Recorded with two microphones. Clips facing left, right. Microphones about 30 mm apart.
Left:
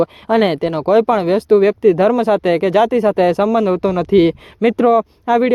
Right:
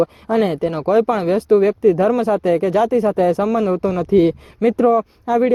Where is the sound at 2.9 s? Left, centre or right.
Left.